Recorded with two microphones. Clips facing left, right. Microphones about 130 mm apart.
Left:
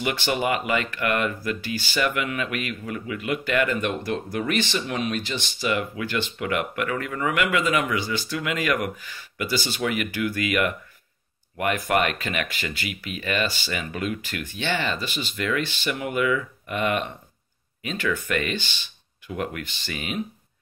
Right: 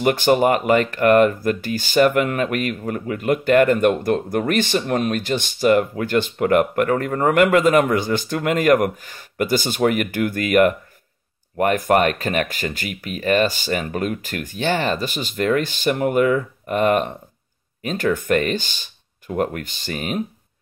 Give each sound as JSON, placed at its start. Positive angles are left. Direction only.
{"t": 0.0, "sound": "speech", "side_deg": -45}